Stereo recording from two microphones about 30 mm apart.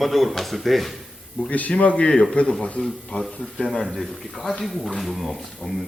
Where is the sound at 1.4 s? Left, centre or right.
Left.